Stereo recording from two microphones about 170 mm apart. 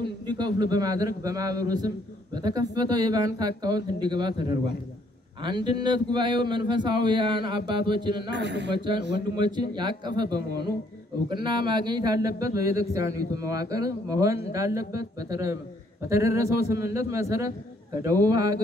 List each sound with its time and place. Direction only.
0.0 s speech: 25° right (ahead or behind)
8.3 s a man's voice: 90° right
8.7 s a man's voice: 25° right (ahead or behind)